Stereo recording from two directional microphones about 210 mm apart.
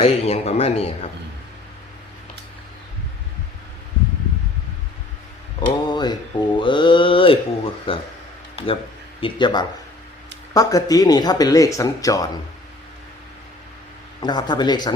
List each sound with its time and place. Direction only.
0.0 s speech: 30° left (ahead or behind)
5.5 s a sound: 20° left (ahead or behind)
6.6 s speech: 25° left (ahead or behind)
14.2 s speech: 20° left (ahead or behind)